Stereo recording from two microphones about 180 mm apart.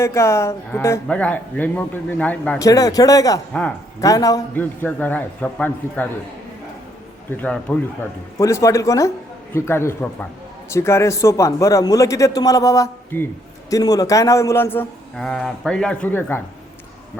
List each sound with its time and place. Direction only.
0.0 s a man's voice: 15° left (ahead or behind)
2.6 s a man's voice: 20° left (ahead or behind)
7.3 s a man's voice: 5° left (ahead or behind)